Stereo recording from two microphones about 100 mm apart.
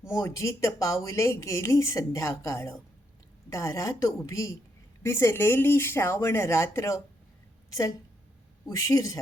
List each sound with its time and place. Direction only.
0.1 s a woman's voice: 30° left (ahead or behind)